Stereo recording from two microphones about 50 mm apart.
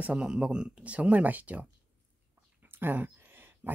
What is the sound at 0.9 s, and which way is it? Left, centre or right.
Speech, right.